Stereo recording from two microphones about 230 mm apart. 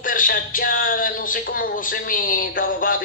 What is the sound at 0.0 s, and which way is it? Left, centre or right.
Speech, left.